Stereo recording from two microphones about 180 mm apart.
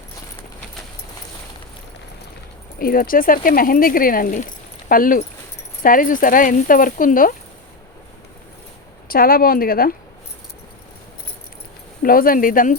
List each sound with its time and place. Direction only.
2.7 s speech: 55° left (ahead or behind)
9.0 s speech: 55° left (ahead or behind)
12.0 s speech: 55° left (ahead or behind)